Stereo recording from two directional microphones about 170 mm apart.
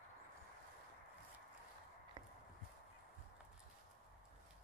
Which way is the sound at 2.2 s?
25° right (ahead or behind).